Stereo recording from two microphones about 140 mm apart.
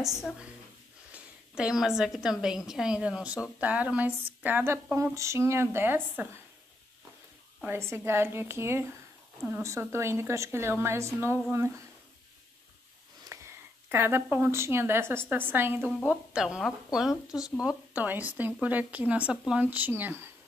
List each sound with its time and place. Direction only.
0.0 s a woman's voice: 5° right (ahead or behind)
7.6 s a woman's voice: 15° right (ahead or behind)
13.3 s a sound: 20° right (ahead or behind)
13.8 s speech: 15° right (ahead or behind)